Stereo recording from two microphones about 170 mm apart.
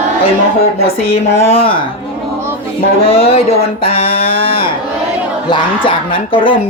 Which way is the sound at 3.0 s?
35° left (ahead or behind).